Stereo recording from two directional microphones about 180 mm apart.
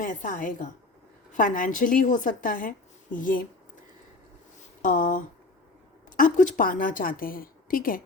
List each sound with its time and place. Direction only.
0.0 s a woman's voice: 45° left (ahead or behind)
4.8 s a woman's voice: 50° left (ahead or behind)